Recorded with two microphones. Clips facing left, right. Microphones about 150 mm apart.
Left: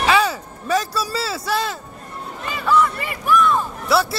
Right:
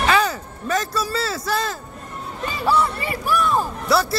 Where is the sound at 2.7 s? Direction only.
35° right (ahead or behind).